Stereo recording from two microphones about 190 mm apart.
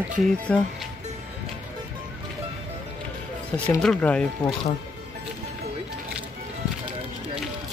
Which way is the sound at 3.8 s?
5° left (ahead or behind).